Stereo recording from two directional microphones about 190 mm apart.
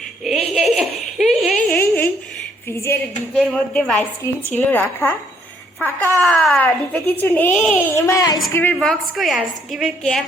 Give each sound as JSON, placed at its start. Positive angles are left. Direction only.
{"t": 0.3, "sound": "a sound", "side_deg": 0}
{"t": 2.6, "sound": "a woman's voice", "side_deg": 15}
{"t": 6.1, "sound": "a woman's voice", "side_deg": 10}
{"t": 7.9, "sound": "a woman's voice", "side_deg": 15}
{"t": 8.5, "sound": "a woman's voice", "side_deg": 5}